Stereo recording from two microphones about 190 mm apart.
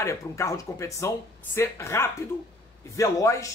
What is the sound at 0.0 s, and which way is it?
Speech, 15° left (ahead or behind).